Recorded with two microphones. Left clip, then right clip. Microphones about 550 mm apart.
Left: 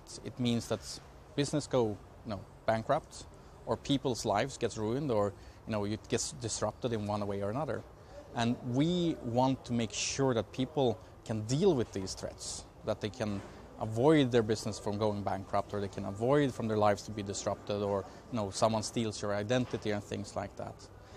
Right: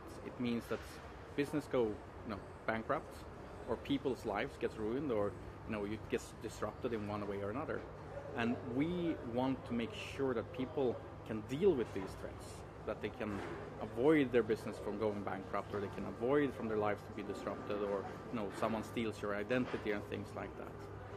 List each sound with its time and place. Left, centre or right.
0.4 s speech: left